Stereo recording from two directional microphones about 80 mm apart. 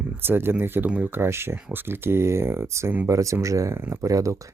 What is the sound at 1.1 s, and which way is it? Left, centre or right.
Speech, right.